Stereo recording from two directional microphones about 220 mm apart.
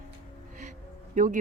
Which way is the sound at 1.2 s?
35° right (ahead or behind).